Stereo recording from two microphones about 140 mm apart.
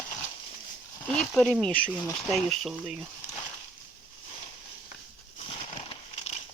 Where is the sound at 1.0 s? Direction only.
10° left (ahead or behind).